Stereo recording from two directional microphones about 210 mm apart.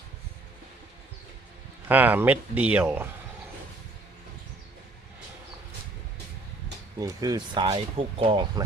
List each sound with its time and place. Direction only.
1.9 s speech: 10° right (ahead or behind)
7.0 s speech: 20° right (ahead or behind)